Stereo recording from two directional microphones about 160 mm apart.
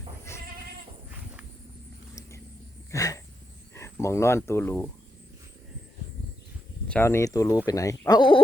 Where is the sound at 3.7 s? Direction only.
20° left (ahead or behind).